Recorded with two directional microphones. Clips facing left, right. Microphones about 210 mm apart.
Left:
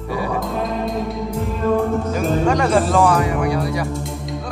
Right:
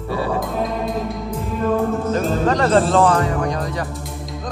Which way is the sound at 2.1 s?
10° left (ahead or behind).